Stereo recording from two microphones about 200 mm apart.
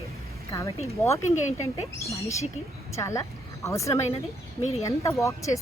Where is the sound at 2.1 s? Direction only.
15° left (ahead or behind).